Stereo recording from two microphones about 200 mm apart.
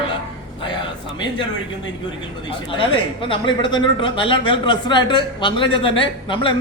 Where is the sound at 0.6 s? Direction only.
25° left (ahead or behind).